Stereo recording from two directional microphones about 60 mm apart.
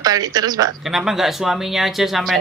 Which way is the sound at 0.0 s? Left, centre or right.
Right.